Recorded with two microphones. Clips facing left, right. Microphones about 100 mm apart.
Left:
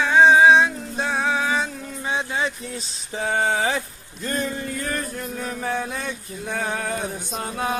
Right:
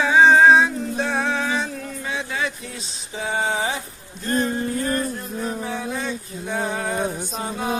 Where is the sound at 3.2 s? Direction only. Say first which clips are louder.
Left 2 dB; 55° left (ahead or behind).